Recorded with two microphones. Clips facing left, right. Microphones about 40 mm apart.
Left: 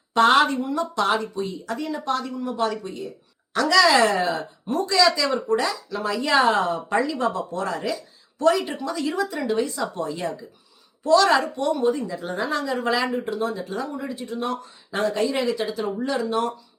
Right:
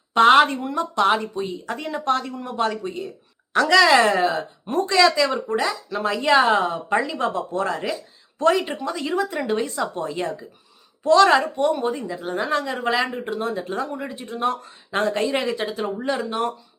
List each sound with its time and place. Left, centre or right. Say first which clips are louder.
0.1 s a woman's voice: right 3 dB; right
4.1 s speech: right 2 dB; centre
4.4 s a woman's voice: right 2 dB; right
5.5 s speech: even; centre
5.9 s speech: right 4 dB; right
6.4 s speech: right 1 dB; centre
7.1 s speech: right 1 dB; right
12.0 s speech: right 2 dB; centre
12.4 s a woman's voice: right 1 dB; right